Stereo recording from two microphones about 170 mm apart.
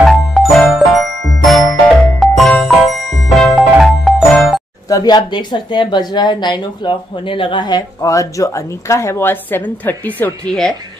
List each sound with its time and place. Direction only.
0.0 s music: centre (ahead or behind)
3.1 s music: 20° left (ahead or behind)
3.3 s music: centre (ahead or behind)
4.8 s speech: 20° left (ahead or behind); by 10.7 s 5° left (ahead or behind)